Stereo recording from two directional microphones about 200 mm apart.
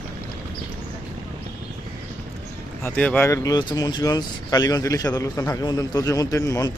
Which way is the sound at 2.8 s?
5° left (ahead or behind).